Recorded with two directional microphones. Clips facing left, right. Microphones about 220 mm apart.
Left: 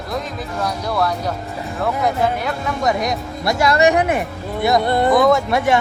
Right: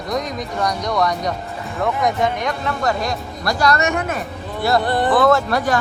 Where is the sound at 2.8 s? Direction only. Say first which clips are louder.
Left 3 dB; 20° left (ahead or behind).